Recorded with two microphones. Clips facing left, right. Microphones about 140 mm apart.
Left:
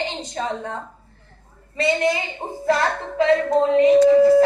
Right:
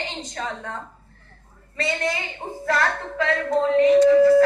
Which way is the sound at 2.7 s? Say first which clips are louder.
Left 3 dB; 25° left (ahead or behind).